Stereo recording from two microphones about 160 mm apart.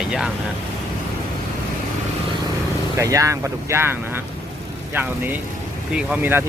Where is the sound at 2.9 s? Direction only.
20° right (ahead or behind).